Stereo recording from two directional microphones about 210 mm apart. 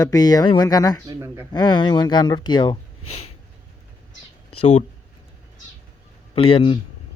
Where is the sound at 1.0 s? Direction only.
15° right (ahead or behind).